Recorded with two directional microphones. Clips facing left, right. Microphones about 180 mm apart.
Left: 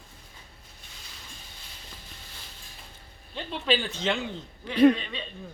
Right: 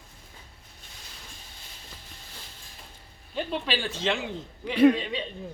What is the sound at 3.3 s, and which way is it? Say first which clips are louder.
A man's voice: left 1 dB; 5° right (ahead or behind).